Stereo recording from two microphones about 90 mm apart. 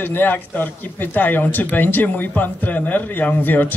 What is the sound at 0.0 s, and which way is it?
Speech, 20° left (ahead or behind).